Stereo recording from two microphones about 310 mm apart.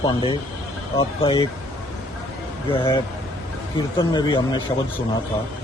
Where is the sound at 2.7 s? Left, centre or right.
Centre.